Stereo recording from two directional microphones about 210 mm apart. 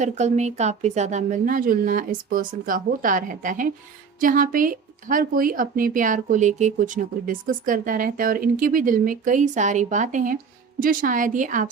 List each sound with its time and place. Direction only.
0.0 s speech: 35° right (ahead or behind)